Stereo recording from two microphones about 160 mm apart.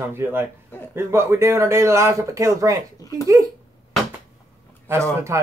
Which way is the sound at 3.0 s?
25° left (ahead or behind).